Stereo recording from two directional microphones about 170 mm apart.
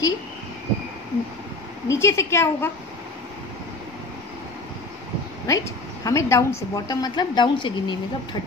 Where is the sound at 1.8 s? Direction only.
15° left (ahead or behind).